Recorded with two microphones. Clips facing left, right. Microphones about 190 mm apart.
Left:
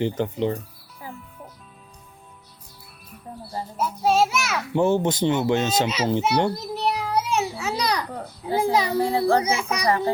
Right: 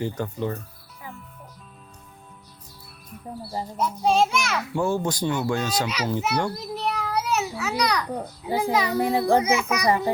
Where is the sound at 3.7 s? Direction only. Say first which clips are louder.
Left 1 dB; 5° left (ahead or behind).